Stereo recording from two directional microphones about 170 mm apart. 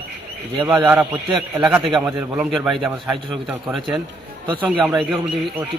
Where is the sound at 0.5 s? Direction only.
25° right (ahead or behind).